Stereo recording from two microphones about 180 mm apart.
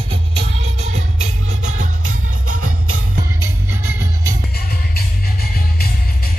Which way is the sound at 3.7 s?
15° right (ahead or behind).